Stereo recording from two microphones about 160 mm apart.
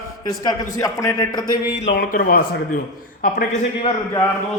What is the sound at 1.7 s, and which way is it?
Speech, 75° left (ahead or behind).